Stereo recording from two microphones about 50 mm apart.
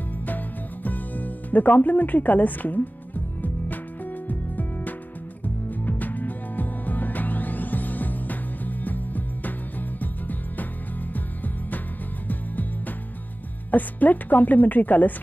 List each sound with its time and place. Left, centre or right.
0.8 s speech: left
3.6 s music: left
13.7 s speech: left